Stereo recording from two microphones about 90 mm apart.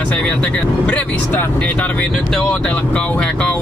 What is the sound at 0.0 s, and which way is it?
Speech, 15° left (ahead or behind).